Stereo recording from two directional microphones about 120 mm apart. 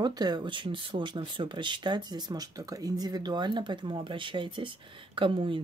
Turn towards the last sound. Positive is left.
turn(degrees=-45)  # may be behind; listen again after turning